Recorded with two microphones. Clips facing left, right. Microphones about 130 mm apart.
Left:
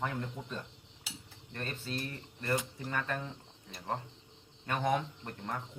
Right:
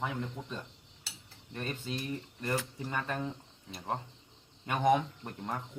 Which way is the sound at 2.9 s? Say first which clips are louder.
Right 1 dB; 15° right (ahead or behind).